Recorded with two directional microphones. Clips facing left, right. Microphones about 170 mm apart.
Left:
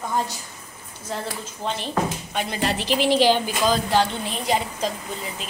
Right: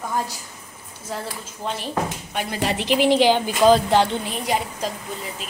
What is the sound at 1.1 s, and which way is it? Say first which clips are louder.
Speech: left 1 dB; 5° right (ahead or behind).